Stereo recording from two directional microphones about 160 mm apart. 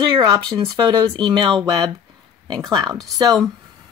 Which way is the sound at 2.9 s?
Centre (ahead or behind).